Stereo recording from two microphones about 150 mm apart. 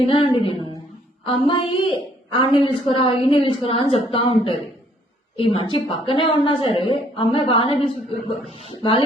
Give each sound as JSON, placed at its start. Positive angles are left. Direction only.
{"t": 0.0, "sound": "a woman's voice", "side_deg": 40}